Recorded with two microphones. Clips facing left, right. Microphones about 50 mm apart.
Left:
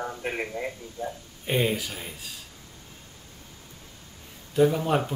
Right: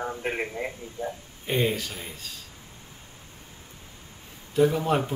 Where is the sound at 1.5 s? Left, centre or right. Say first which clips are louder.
Even; centre.